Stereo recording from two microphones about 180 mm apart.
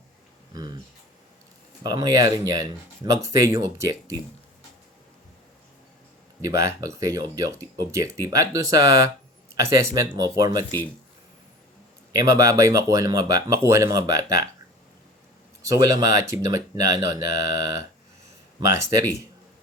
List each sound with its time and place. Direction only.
0.5 s a sound: 20° right (ahead or behind)
1.8 s speech: 20° right (ahead or behind)
6.4 s speech: 15° right (ahead or behind)
12.1 s speech: 15° right (ahead or behind)
15.6 s speech: 20° right (ahead or behind)